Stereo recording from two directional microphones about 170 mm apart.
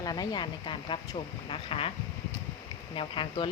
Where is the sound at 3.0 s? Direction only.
30° left (ahead or behind).